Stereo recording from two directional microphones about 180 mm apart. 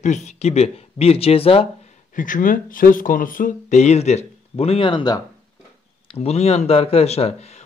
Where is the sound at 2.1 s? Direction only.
45° left (ahead or behind).